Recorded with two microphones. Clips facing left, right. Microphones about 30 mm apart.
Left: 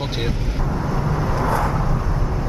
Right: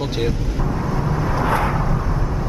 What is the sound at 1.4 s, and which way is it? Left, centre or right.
Vehicle, right.